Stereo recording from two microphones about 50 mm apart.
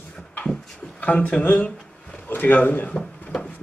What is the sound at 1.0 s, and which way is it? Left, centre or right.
A man's voice, left.